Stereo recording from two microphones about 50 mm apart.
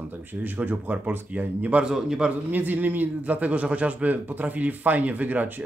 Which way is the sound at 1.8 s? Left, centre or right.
Centre.